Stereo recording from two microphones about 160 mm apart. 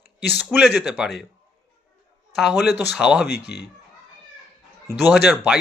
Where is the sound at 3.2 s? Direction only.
90° left.